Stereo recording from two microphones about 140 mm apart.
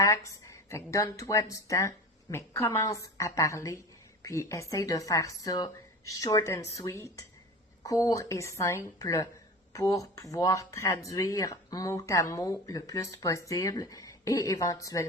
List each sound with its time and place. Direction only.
0.0 s a woman's voice: 20° left (ahead or behind)